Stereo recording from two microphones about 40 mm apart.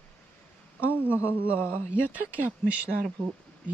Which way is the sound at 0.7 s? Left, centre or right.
Right.